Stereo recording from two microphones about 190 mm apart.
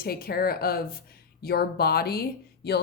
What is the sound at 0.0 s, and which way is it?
A woman's voice, 55° left (ahead or behind).